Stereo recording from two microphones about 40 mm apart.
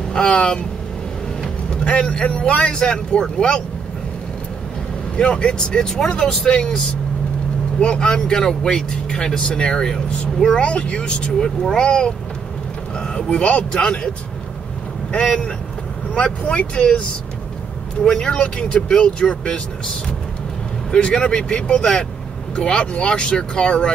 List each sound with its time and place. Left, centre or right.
0.3 s speech: left
1.9 s speech: centre
5.1 s speech: left
7.8 s speech: left
15.1 s speech: left
18.0 s speech: centre
18.3 s speech: left
20.9 s speech: left